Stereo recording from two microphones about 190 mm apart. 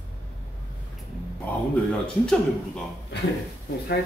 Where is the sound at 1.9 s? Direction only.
5° left (ahead or behind).